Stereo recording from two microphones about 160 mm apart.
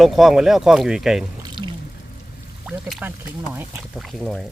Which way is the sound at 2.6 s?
5° right (ahead or behind).